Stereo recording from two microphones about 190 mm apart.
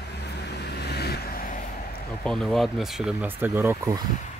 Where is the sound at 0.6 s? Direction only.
60° left (ahead or behind).